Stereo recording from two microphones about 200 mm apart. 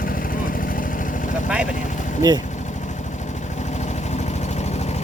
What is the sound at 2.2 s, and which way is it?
Speech, 20° right (ahead or behind).